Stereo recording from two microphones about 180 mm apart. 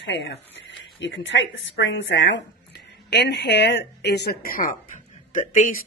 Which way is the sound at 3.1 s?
70° left (ahead or behind).